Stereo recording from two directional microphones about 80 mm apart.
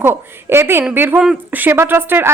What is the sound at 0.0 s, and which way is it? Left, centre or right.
Speech, right.